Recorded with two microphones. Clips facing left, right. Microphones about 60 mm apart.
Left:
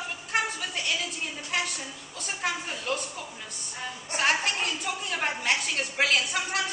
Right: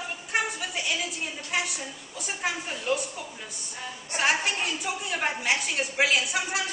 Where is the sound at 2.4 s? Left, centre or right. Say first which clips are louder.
Even; centre.